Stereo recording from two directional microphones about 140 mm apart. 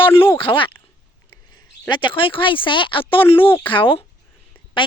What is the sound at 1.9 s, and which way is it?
Speech, 35° left (ahead or behind).